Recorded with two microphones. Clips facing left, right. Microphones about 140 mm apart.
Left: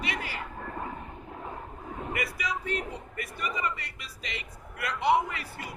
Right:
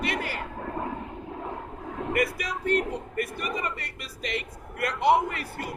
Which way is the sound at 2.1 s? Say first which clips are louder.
Right 6 dB; 55° right (ahead or behind).